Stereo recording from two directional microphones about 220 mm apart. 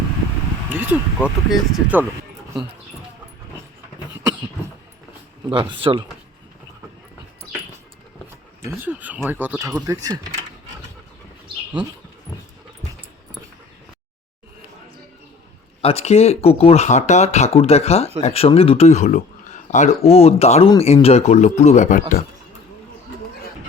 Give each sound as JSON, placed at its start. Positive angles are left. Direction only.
{"t": 0.7, "sound": "speech", "side_deg": -10}
{"t": 5.5, "sound": "speech", "side_deg": -25}
{"t": 8.6, "sound": "speech", "side_deg": -10}
{"t": 15.8, "sound": "speech", "side_deg": 25}